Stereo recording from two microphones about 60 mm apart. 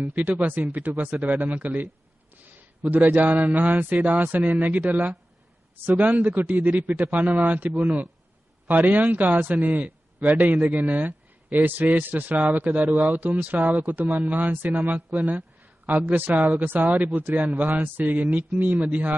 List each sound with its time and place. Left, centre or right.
0.0 s a man's voice: right